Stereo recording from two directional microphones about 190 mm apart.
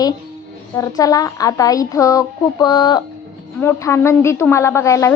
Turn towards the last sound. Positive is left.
turn(degrees=15)  # may be behind; listen again after turning